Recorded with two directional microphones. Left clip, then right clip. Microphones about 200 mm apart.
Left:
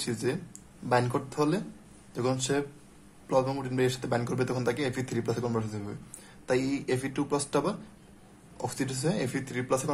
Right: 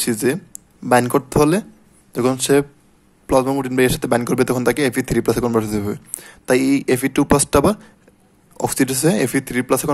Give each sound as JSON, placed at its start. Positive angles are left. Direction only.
{"t": 0.0, "sound": "speech", "side_deg": -45}